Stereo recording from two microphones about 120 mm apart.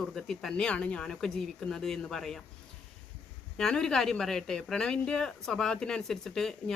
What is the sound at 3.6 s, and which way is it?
Speech, 5° left (ahead or behind).